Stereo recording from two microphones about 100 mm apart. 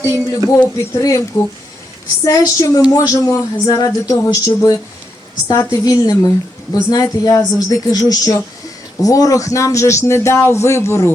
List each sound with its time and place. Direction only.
0.0 s speech: 30° right (ahead or behind)
0.9 s speech: 30° left (ahead or behind)